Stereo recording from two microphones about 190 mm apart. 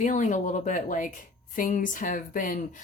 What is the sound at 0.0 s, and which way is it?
Speech, 40° left (ahead or behind).